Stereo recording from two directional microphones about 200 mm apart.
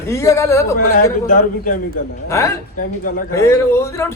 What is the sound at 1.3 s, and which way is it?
Speech, 40° left (ahead or behind).